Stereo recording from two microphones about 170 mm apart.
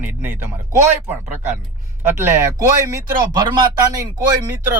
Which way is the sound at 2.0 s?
15° right (ahead or behind).